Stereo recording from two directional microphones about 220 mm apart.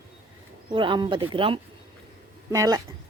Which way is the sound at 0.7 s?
20° right (ahead or behind).